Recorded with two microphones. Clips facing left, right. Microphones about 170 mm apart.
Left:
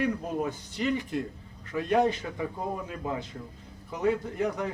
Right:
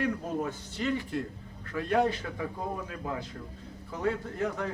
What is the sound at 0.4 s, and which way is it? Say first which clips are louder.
A man's voice: left 2 dB; 15° left (ahead or behind).